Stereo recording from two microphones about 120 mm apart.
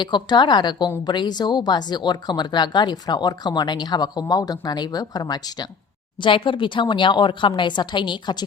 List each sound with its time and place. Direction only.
0.0 s speech: 40° left (ahead or behind)